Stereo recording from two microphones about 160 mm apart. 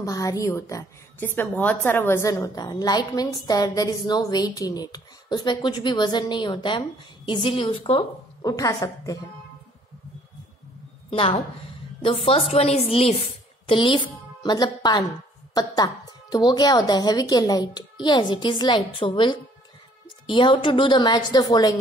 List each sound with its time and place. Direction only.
0.0 s a woman's voice: 20° left (ahead or behind)
11.1 s a woman's voice: 35° left (ahead or behind)